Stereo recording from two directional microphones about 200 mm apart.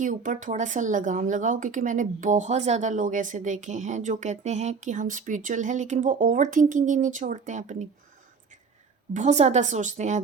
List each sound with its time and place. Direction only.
0.0 s speech: 40° right (ahead or behind)
9.1 s speech: 35° right (ahead or behind)